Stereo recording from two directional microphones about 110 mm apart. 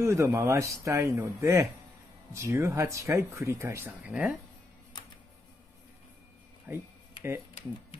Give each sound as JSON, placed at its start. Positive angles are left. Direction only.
{"t": 0.0, "sound": "speech", "side_deg": -25}
{"t": 6.7, "sound": "speech", "side_deg": -15}